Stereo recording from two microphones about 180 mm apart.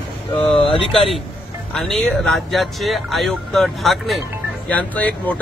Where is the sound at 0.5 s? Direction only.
30° left (ahead or behind).